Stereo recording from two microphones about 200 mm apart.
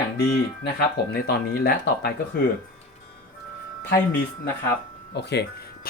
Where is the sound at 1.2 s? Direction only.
55° left (ahead or behind).